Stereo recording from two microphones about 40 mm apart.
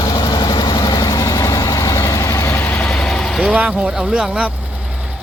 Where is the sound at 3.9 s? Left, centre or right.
Centre.